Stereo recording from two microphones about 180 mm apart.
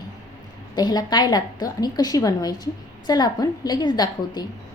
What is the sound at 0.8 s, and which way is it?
A woman's voice, 25° left (ahead or behind).